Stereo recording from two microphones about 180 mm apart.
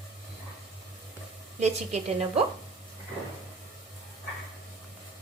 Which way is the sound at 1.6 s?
40° right (ahead or behind).